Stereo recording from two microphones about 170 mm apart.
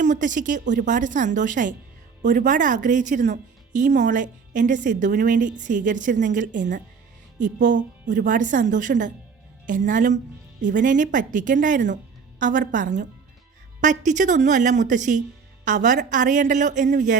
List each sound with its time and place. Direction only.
0.0 s a woman's voice: 45° right (ahead or behind)